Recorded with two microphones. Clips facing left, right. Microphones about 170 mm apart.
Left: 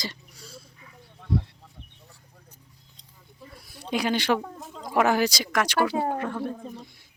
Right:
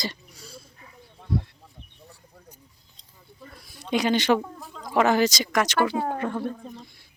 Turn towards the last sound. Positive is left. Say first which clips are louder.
# even
turn(degrees=0)  # may be behind; listen again after turning